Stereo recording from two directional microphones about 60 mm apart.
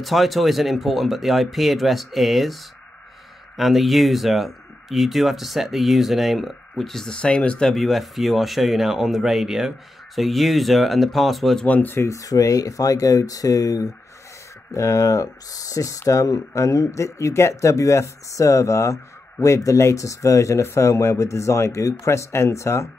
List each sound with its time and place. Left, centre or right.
0.0 s speech: centre
7.7 s speech: centre
11.6 s speech: left
12.1 s speech: left
14.7 s speech: left
16.0 s speech: left